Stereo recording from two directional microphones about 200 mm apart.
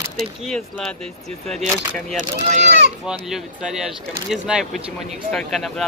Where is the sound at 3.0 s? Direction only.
5° right (ahead or behind).